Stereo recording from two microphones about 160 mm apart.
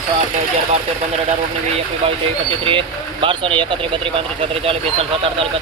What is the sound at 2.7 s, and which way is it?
Speech, 35° right (ahead or behind).